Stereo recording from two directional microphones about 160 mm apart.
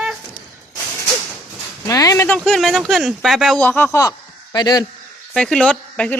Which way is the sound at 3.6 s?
10° left (ahead or behind).